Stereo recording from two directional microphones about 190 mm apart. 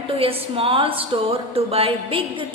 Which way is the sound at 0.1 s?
30° right (ahead or behind).